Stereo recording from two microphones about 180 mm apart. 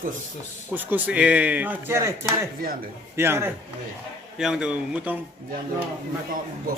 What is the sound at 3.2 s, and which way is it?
Speech, 15° right (ahead or behind).